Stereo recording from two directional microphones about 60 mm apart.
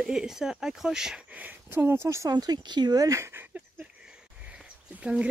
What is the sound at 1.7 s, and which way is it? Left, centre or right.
Speech, right.